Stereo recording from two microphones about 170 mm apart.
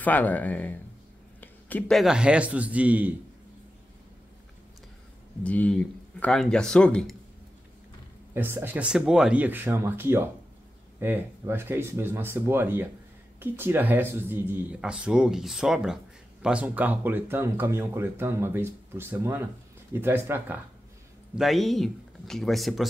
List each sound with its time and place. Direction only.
0.0 s speech: 10° left (ahead or behind); by 3.2 s 10° right (ahead or behind)
5.4 s speech: 10° left (ahead or behind)
8.4 s speech: 15° right (ahead or behind)
21.4 s speech: centre (ahead or behind)